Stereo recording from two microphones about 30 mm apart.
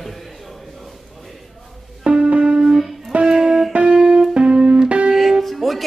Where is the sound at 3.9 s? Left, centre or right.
Right.